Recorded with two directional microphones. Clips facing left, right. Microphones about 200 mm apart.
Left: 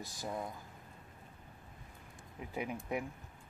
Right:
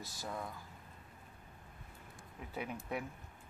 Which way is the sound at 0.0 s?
15° left (ahead or behind).